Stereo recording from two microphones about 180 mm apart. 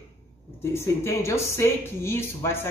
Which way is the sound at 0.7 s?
15° left (ahead or behind).